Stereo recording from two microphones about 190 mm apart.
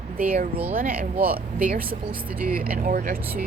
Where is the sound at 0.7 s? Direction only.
50° right (ahead or behind).